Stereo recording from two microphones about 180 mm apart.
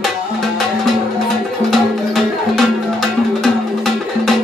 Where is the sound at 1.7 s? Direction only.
Centre (ahead or behind).